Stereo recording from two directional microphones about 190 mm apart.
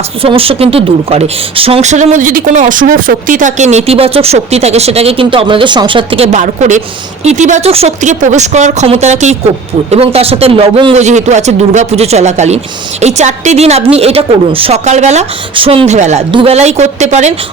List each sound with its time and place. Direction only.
0.2 s speech: 30° right (ahead or behind)